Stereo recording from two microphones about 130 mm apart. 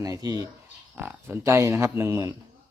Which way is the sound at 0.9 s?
15° right (ahead or behind).